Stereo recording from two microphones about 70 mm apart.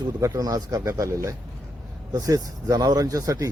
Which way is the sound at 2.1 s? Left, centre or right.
Right.